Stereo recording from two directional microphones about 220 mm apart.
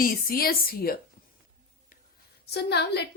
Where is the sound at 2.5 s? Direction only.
50° left (ahead or behind).